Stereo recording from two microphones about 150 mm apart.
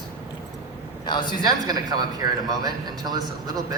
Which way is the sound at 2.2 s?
20° right (ahead or behind).